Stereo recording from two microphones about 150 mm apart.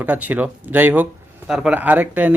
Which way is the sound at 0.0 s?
10° right (ahead or behind).